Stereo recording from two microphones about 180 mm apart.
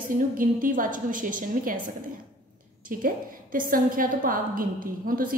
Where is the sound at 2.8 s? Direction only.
50° right (ahead or behind).